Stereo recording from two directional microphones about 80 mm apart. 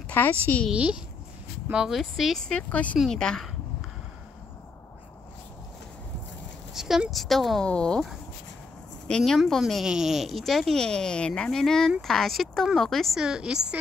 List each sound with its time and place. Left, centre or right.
0.1 s a woman's voice: left
0.7 s a woman's voice: centre
6.7 s speech: centre
9.0 s speech: centre
13.2 s a woman's voice: centre